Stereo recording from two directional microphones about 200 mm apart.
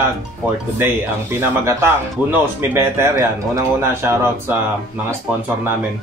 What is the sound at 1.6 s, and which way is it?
Speech, 10° right (ahead or behind).